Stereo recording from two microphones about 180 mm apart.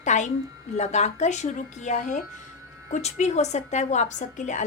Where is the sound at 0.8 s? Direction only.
40° left (ahead or behind).